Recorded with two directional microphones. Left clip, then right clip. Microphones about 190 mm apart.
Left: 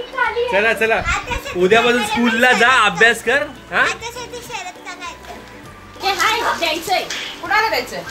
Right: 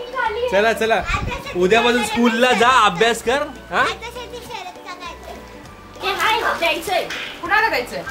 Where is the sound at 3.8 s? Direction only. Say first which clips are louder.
Left 4 dB; centre (ahead or behind).